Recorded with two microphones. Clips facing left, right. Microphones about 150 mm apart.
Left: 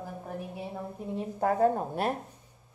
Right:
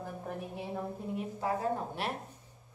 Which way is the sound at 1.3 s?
50° left (ahead or behind).